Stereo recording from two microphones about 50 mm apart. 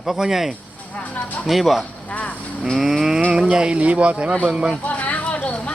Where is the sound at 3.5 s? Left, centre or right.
Right.